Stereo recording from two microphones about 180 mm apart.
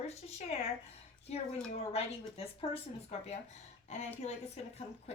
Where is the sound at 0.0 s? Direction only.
35° left (ahead or behind).